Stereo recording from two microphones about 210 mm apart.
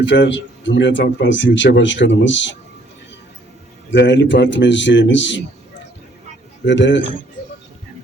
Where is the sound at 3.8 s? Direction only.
60° left (ahead or behind).